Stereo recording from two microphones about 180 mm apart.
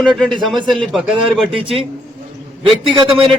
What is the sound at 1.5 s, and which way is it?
Speech, 30° right (ahead or behind).